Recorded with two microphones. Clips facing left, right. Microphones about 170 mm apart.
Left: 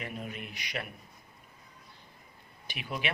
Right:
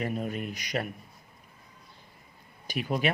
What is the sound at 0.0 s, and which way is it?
Speech, 40° right (ahead or behind).